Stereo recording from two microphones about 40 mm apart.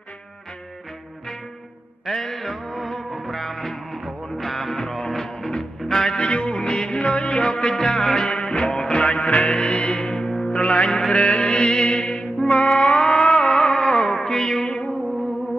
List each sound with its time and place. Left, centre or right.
2.0 s music: centre
6.1 s music: left
7.0 s music: left; by 14.7 s centre
14.7 s music: left